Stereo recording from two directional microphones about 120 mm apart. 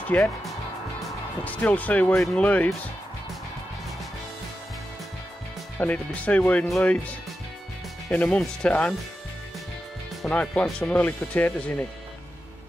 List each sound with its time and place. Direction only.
0.0 s speech: 15° left (ahead or behind)
1.4 s speech: 15° left (ahead or behind)
5.8 s speech: 10° left (ahead or behind)
10.2 s speech: 10° left (ahead or behind)